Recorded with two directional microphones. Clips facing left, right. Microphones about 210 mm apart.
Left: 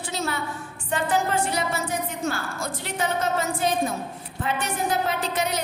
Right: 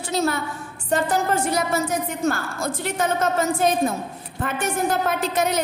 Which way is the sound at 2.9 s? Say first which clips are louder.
Right 2 dB; 50° right (ahead or behind).